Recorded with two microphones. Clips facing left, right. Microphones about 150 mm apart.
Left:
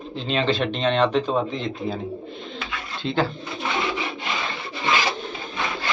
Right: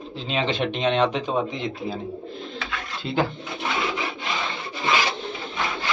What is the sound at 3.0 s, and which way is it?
Speech, 10° right (ahead or behind).